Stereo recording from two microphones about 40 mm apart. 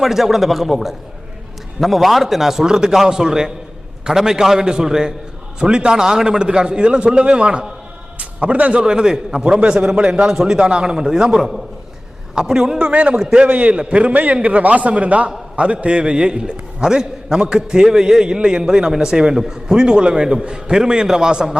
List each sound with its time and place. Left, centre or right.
0.0 s a man's voice: centre; by 8.8 s right
8.8 s a man's voice: centre
9.4 s a man's voice: right; by 12.8 s centre
12.8 s a man's voice: right
13.1 s a man's voice: right
13.5 s a man's voice: right; by 21.6 s centre